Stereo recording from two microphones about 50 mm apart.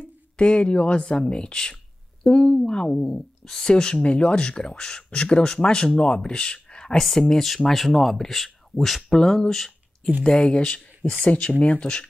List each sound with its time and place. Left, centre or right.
0.4 s speech: left
10.2 s speech: centre